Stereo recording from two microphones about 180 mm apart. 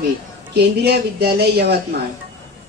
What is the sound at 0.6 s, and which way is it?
A woman's voice, 65° right (ahead or behind).